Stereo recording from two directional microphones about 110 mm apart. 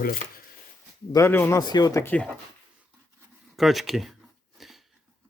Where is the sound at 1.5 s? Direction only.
35° left (ahead or behind).